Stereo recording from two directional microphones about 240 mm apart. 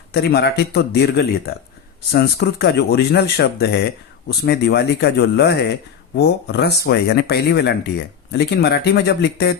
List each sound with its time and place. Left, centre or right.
0.1 s speech: left